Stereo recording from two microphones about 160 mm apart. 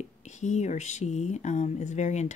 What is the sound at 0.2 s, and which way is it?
Speech, 45° left (ahead or behind).